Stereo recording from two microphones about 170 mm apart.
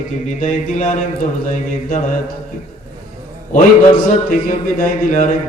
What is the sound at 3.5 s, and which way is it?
Speech, 55° left (ahead or behind).